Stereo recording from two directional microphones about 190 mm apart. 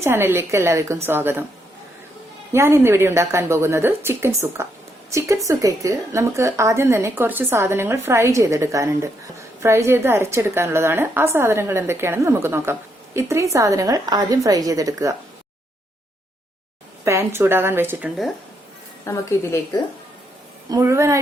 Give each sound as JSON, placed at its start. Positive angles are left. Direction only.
{"t": 0.0, "sound": "a woman's voice", "side_deg": -10}
{"t": 2.5, "sound": "a woman's voice", "side_deg": -15}
{"t": 17.1, "sound": "a woman's voice", "side_deg": -15}
{"t": 19.0, "sound": "a woman's voice", "side_deg": 15}
{"t": 20.7, "sound": "a woman's voice", "side_deg": -15}